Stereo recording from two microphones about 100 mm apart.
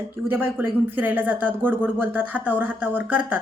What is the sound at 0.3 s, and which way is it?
A woman's voice, 20° right (ahead or behind).